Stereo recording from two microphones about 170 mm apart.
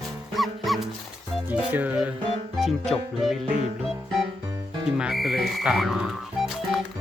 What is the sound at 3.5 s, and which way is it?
Music, 45° right (ahead or behind).